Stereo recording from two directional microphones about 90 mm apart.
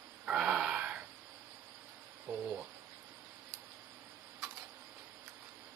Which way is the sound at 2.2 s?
15° right (ahead or behind).